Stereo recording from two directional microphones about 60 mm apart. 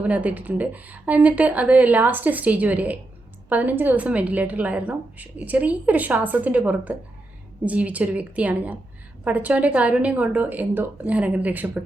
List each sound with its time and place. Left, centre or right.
0.0 s a woman's voice: right